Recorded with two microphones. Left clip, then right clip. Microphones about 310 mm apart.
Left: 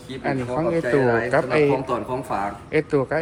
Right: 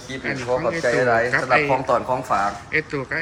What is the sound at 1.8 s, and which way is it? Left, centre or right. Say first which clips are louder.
Speech: right 5 dB; centre.